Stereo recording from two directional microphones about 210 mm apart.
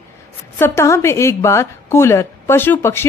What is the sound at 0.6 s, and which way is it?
A woman's voice, 10° left (ahead or behind).